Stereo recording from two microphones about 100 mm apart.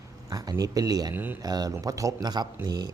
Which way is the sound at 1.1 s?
20° right (ahead or behind).